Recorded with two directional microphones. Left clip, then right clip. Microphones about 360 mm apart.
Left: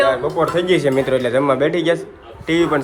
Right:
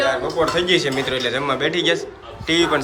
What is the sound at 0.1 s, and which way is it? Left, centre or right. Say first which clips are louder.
A man's voice: left 2 dB; centre.